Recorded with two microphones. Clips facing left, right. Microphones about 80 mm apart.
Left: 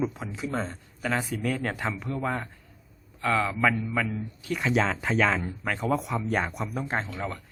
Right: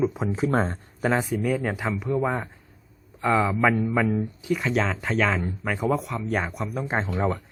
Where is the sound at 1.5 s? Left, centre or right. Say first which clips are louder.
Right 4 dB; centre.